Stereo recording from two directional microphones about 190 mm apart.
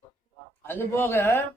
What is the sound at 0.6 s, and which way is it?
Speech, 10° left (ahead or behind).